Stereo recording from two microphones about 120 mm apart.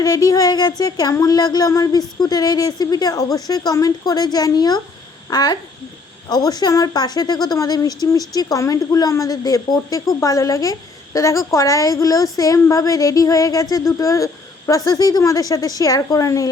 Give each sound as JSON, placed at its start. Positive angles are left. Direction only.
{"t": 0.0, "sound": "a woman's voice", "side_deg": 30}